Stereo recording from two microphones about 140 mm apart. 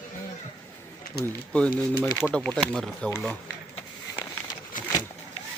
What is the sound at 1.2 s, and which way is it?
Speech, 10° left (ahead or behind).